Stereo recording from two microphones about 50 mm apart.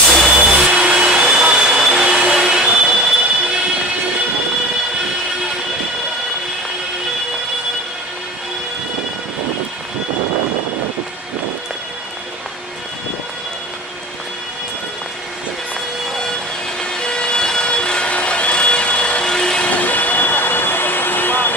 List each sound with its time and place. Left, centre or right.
0.4 s music: centre
2.0 s train: centre
16.8 s vehicle: centre
19.6 s vehicle: left